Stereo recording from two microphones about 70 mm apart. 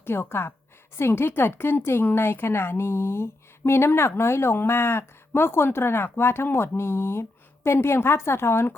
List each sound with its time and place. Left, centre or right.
0.0 s speech: left